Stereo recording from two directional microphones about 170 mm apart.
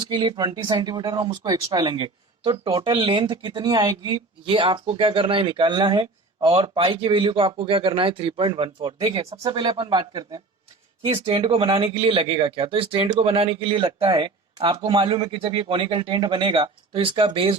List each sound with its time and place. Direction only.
0.0 s speech: 30° right (ahead or behind)
9.0 s speech: 20° right (ahead or behind)